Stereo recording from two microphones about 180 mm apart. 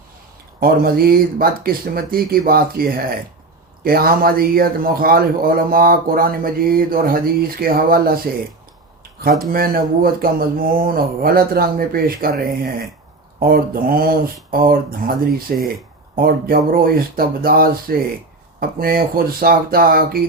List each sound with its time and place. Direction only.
0.6 s speech: 55° right (ahead or behind)
9.5 s speech: 55° right (ahead or behind)